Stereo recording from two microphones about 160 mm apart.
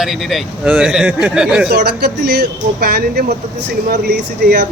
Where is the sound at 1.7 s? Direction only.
90° right.